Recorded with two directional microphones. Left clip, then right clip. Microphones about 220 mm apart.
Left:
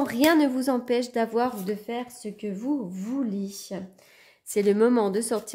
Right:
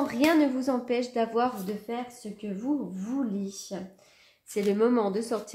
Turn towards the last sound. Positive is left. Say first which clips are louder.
# left 3 dB
turn(degrees=45)  # may be behind; listen again after turning